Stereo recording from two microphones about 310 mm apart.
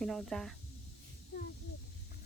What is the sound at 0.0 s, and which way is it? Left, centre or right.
Speech, centre.